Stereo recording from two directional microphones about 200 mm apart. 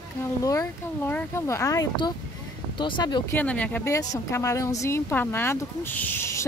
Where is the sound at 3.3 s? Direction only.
5° left (ahead or behind).